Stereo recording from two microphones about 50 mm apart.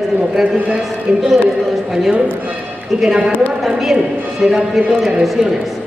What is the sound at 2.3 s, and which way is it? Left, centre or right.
Speech, right.